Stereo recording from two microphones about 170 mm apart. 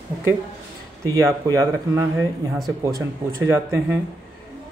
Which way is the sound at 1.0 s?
20° right (ahead or behind).